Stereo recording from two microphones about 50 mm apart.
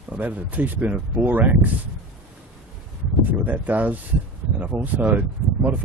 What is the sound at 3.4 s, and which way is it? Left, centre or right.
Speech, right.